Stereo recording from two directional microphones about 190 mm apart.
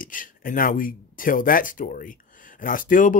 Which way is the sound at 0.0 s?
45° left (ahead or behind).